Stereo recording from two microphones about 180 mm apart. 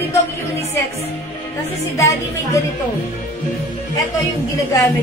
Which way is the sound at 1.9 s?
15° left (ahead or behind).